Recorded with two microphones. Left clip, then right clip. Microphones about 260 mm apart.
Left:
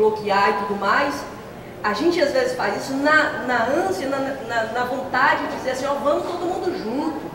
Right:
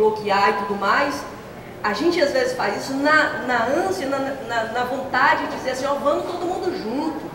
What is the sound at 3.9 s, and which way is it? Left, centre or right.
A woman's voice, centre.